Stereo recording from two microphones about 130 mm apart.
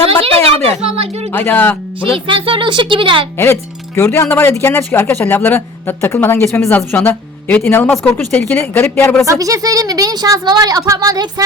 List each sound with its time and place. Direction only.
0.2 s speech: 50° right (ahead or behind)
1.3 s speech: 15° left (ahead or behind)
2.1 s speech: 40° right (ahead or behind)
3.3 s speech: 20° left (ahead or behind)
9.2 s a woman's voice: 25° right (ahead or behind)